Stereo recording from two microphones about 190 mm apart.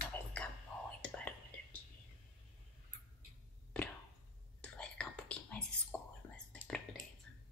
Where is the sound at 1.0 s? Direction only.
5° left (ahead or behind).